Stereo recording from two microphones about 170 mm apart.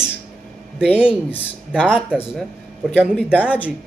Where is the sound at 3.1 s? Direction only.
5° left (ahead or behind).